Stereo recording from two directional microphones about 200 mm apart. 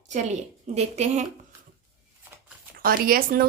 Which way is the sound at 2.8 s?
45° right (ahead or behind).